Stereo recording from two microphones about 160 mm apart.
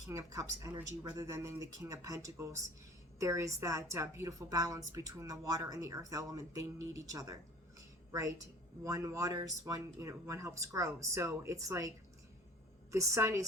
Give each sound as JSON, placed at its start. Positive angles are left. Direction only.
{"t": 0.1, "sound": "a woman's voice", "side_deg": -20}
{"t": 7.8, "sound": "a sound", "side_deg": -20}
{"t": 8.8, "sound": "a woman's voice", "side_deg": -20}